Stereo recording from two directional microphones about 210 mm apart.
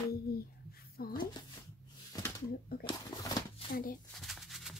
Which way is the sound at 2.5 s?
45° left (ahead or behind).